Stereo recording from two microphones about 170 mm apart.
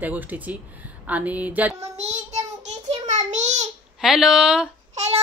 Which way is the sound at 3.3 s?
45° right (ahead or behind).